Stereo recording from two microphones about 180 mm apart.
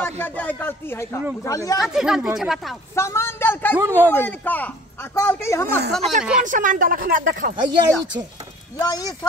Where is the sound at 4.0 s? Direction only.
10° left (ahead or behind).